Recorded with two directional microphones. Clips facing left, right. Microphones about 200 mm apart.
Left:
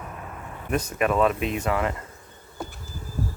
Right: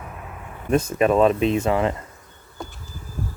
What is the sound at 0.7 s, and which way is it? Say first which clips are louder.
Speech: right 6 dB; 25° right (ahead or behind).